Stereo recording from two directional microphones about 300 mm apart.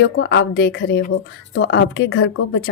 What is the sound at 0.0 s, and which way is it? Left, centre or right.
A woman's voice, left.